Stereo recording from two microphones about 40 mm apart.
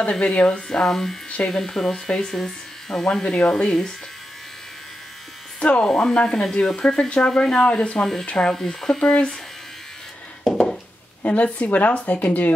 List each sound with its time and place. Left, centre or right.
0.0 s speech: left
0.8 s speech: centre
5.6 s a woman's voice: left
10.4 s a sound: centre
11.2 s a woman's voice: left